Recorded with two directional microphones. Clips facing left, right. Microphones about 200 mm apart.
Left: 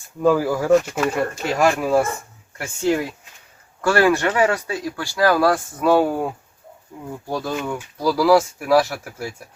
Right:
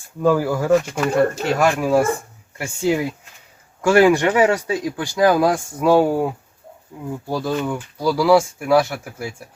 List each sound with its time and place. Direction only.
0.2 s speech: centre (ahead or behind)